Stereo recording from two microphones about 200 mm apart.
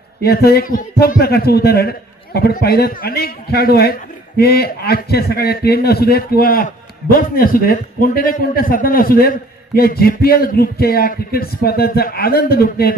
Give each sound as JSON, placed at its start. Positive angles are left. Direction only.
{"t": 0.2, "sound": "a man's voice", "side_deg": 50}